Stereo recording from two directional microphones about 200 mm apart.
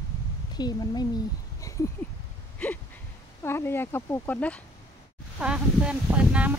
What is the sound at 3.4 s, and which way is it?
Speech, 10° left (ahead or behind).